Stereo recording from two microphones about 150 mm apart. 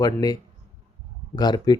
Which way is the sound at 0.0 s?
25° left (ahead or behind).